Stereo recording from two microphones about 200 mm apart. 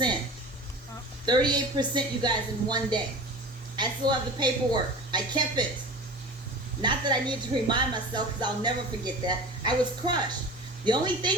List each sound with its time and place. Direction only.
1.2 s speech: 20° right (ahead or behind)
6.8 s speech: 20° right (ahead or behind)